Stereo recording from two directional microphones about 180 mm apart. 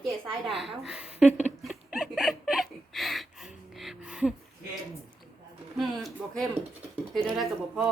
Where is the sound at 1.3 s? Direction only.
40° left (ahead or behind).